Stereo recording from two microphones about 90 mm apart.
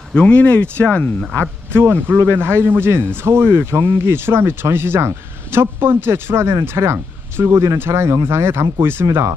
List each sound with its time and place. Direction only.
0.1 s speech: 15° left (ahead or behind)
1.7 s a man's voice: 25° right (ahead or behind)